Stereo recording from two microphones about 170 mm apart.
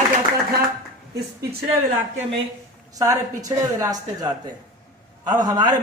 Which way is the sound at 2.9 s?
20° right (ahead or behind).